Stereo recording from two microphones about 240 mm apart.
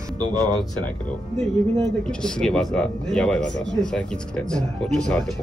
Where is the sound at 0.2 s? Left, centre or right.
Centre.